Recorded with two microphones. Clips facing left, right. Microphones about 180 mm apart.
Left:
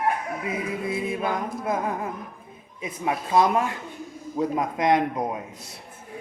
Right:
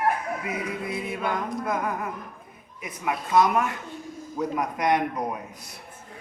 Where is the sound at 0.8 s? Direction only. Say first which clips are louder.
Left 3 dB; 25° left (ahead or behind).